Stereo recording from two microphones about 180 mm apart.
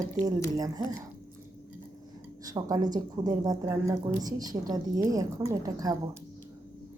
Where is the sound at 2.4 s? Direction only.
20° right (ahead or behind).